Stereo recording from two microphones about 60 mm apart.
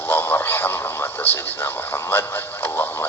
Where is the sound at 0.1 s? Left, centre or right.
Left.